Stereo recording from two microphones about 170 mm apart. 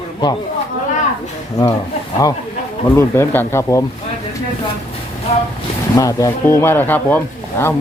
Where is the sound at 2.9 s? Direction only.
15° left (ahead or behind).